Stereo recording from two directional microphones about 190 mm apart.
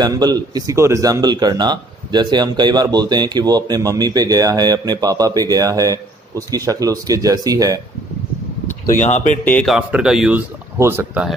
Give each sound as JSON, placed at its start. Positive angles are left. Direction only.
{"t": 0.0, "sound": "a man's voice", "side_deg": -20}
{"t": 8.8, "sound": "speech", "side_deg": 40}
{"t": 9.4, "sound": "speech", "side_deg": 10}
{"t": 9.8, "sound": "speech", "side_deg": -5}